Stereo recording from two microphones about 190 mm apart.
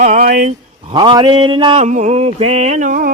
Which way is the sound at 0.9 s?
25° right (ahead or behind).